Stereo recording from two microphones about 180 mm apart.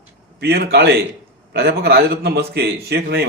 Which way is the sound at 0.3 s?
65° right (ahead or behind).